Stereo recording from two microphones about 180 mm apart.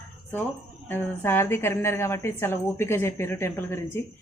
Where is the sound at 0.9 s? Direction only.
10° left (ahead or behind).